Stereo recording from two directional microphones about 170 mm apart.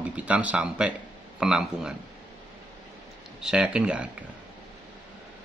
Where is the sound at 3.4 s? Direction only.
5° right (ahead or behind).